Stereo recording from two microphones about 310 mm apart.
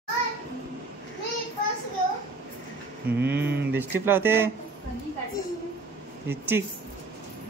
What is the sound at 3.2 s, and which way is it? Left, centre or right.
Speech, right.